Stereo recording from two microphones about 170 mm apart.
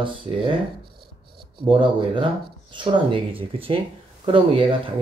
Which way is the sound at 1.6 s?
30° right (ahead or behind).